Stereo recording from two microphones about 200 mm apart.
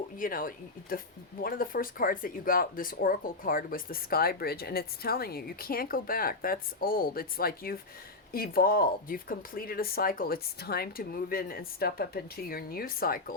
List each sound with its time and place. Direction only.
0.2 s speech: 45° left (ahead or behind)